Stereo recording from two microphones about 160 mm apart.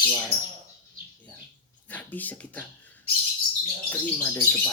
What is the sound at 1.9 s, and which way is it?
Speech, 10° left (ahead or behind).